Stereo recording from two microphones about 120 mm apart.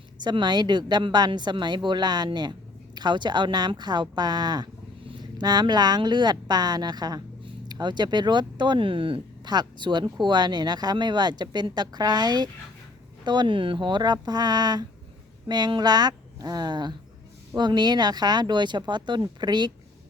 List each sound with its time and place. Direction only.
0.2 s a woman's voice: 40° right (ahead or behind)